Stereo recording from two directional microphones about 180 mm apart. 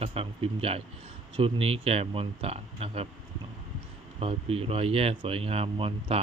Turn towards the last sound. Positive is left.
turn(degrees=-30)  # may be behind; listen again after turning